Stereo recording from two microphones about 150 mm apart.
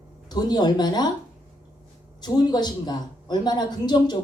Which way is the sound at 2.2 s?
30° left (ahead or behind).